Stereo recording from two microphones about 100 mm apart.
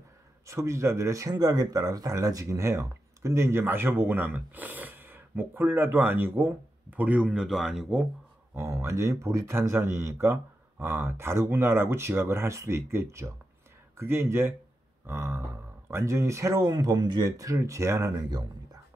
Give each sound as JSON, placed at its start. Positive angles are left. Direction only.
{"t": 0.5, "sound": "speech", "side_deg": -30}
{"t": 8.5, "sound": "speech", "side_deg": -30}